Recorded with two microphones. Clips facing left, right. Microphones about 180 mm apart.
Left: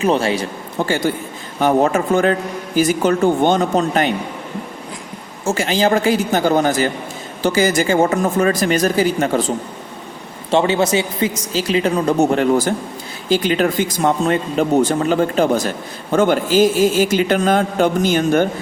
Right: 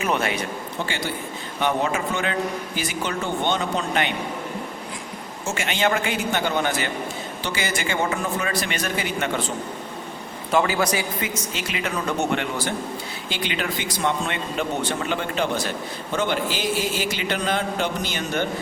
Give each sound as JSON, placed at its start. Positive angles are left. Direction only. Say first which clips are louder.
{"t": 0.0, "sound": "speech", "louder": "left 7 dB", "side_deg": 30}
{"t": 0.9, "sound": "a man's voice", "louder": "left 9 dB", "side_deg": 45}
{"t": 5.5, "sound": "speech", "louder": "left 7 dB", "side_deg": 35}
{"t": 10.5, "sound": "a man's voice", "louder": "left 6 dB", "side_deg": 25}